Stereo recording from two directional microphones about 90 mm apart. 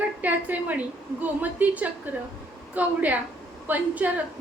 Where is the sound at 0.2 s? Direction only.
20° right (ahead or behind).